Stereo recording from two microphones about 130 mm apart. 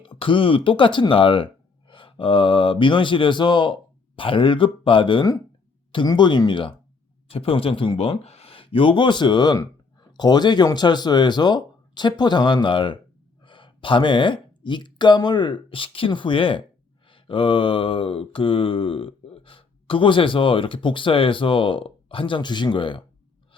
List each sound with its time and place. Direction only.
0.0 s speech: 40° left (ahead or behind)
17.1 s mantra: 45° left (ahead or behind)